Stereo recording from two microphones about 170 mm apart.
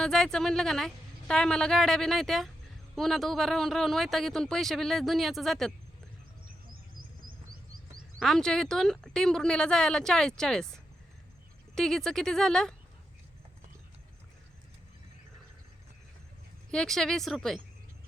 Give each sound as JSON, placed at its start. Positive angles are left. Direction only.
{"t": 0.0, "sound": "a man's voice", "side_deg": 5}
{"t": 7.3, "sound": "a sound", "side_deg": -55}
{"t": 8.2, "sound": "a man's voice", "side_deg": 0}
{"t": 11.7, "sound": "a man's voice", "side_deg": 5}
{"t": 16.7, "sound": "a man's voice", "side_deg": 5}